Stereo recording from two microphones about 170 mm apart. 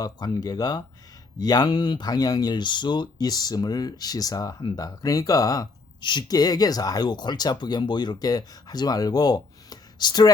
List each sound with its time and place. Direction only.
0.0 s speech: 20° left (ahead or behind)